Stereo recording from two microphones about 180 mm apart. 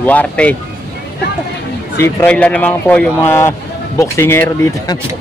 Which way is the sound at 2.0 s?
10° left (ahead or behind).